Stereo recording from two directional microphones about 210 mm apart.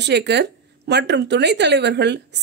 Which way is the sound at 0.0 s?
55° right (ahead or behind).